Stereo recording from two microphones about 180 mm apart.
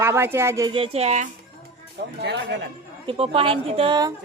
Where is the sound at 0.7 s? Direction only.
30° right (ahead or behind).